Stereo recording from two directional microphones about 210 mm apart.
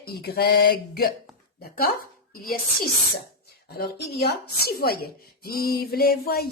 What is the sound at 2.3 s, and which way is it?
Speech, 45° left (ahead or behind).